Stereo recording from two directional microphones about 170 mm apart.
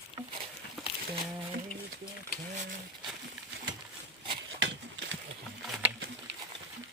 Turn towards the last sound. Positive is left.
turn(degrees=0)  # may be behind; listen again after turning